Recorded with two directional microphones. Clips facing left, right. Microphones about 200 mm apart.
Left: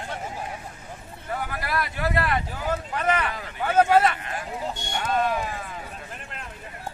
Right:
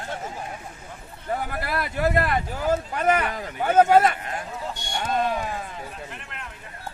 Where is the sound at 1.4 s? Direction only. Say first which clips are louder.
Right 1 dB; 45° right (ahead or behind).